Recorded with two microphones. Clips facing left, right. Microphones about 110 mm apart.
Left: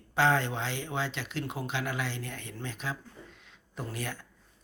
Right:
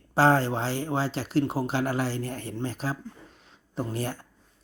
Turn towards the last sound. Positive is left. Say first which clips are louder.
# right 7 dB
turn(degrees=-35)  # may be behind; listen again after turning